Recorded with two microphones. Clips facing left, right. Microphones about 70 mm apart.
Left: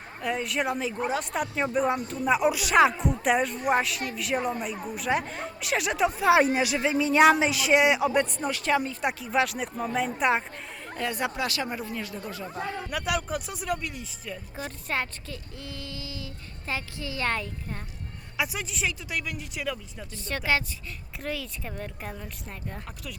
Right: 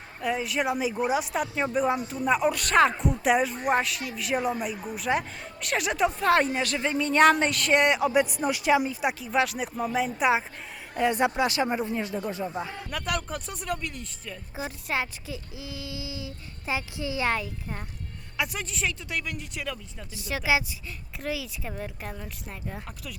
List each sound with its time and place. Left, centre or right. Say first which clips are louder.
0.2 s speech: right 1 dB; centre
10.9 s speech: right 6 dB; right
12.9 s speech: left 2 dB; centre
14.5 s speech: right 2 dB; centre